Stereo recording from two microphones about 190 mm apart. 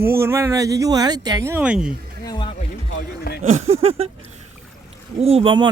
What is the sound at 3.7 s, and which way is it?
Speech, 30° right (ahead or behind).